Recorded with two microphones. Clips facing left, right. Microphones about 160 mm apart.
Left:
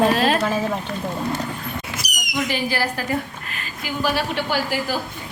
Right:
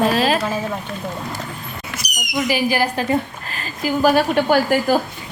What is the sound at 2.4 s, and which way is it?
A woman's voice, 10° right (ahead or behind).